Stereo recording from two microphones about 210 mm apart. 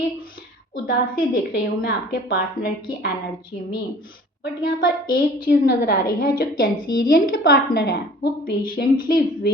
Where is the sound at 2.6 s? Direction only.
40° left (ahead or behind).